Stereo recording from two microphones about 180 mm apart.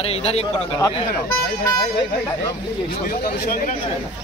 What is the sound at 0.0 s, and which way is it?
Speech, 35° left (ahead or behind).